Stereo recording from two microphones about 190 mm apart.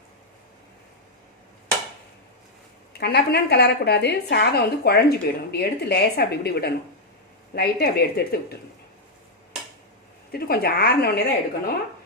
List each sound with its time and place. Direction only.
2.9 s a woman's voice: 60° left (ahead or behind)
10.3 s a woman's voice: 55° left (ahead or behind)